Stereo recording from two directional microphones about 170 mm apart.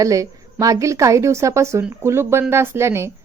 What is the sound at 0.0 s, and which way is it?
A woman's voice, 20° right (ahead or behind).